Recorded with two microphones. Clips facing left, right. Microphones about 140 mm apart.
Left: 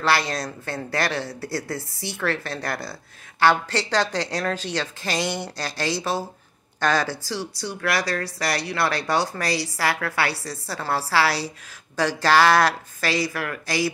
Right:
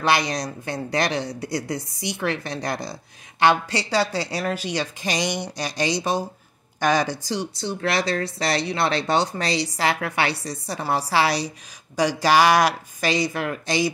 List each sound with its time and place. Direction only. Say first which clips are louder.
0.0 s speech: right 1 dB; 15° right (ahead or behind)